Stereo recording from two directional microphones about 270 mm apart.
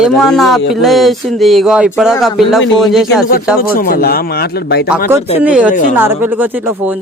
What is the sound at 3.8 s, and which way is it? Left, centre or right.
Speech, left.